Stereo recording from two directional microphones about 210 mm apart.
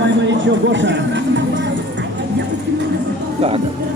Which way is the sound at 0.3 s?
60° right (ahead or behind).